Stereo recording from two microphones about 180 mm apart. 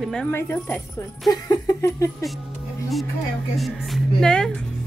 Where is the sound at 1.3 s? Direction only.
20° left (ahead or behind).